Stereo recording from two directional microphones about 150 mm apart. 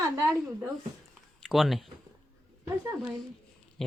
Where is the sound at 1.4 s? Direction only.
Centre (ahead or behind).